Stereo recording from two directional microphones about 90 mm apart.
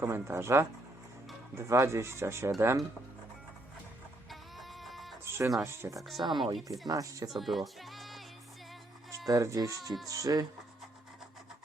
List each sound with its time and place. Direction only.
0.0 s speech: 30° right (ahead or behind)
4.3 s music: centre (ahead or behind)
5.2 s music: 30° right (ahead or behind)
5.6 s speech: 35° right (ahead or behind)
6.2 s speech: 55° right (ahead or behind)
6.8 s speech: 40° right (ahead or behind)
7.3 s speech: centre (ahead or behind)
9.0 s speech: 40° right (ahead or behind)